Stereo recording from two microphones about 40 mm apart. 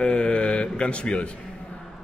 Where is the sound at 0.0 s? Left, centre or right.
Left.